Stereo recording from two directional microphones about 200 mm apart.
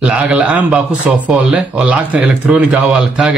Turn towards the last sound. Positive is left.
turn(degrees=-5)  # may be behind; listen again after turning